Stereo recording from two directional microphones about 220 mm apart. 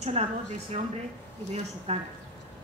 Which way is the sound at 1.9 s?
30° right (ahead or behind).